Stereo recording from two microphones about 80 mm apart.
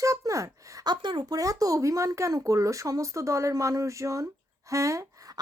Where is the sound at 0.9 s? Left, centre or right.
Right.